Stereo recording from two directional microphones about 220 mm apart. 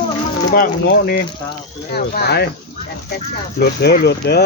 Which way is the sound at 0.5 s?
45° left (ahead or behind).